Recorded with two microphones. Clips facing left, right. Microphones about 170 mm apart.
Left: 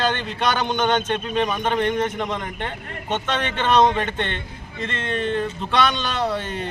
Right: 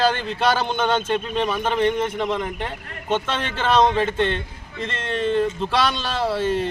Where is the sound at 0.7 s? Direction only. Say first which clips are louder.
Even; 5° right (ahead or behind).